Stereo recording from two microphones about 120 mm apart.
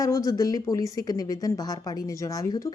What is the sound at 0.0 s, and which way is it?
A woman's voice, 30° left (ahead or behind).